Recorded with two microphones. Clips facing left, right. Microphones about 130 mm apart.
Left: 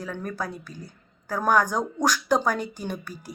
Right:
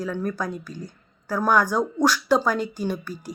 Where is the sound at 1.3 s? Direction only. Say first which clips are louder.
Right 1 dB; 40° left (ahead or behind).